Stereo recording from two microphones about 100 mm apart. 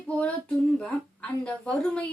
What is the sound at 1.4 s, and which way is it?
Speech, 10° left (ahead or behind).